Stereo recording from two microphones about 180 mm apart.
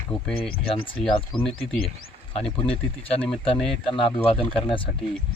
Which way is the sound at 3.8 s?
30° left (ahead or behind).